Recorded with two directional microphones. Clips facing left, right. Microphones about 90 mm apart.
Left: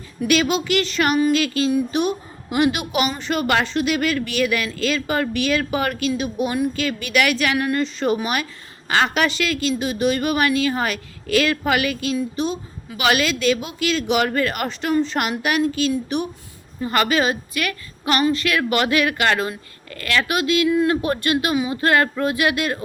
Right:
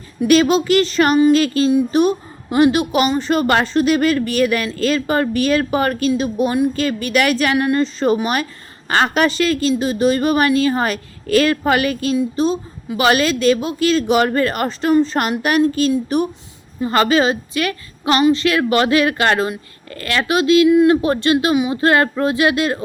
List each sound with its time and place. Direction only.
0.3 s a woman's voice: 35° right (ahead or behind)